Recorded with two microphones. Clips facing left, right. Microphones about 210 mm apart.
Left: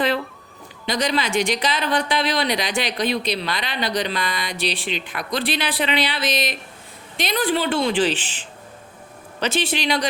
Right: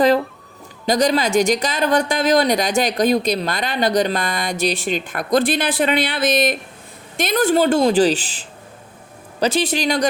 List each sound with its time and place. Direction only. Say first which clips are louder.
0.9 s speech: right 6 dB; 45° right (ahead or behind)